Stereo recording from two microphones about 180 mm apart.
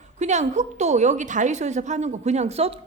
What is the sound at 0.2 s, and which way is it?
A woman's voice, 40° right (ahead or behind).